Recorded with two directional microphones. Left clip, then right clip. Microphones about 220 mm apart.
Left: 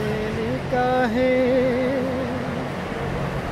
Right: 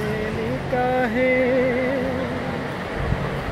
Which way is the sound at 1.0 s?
15° left (ahead or behind).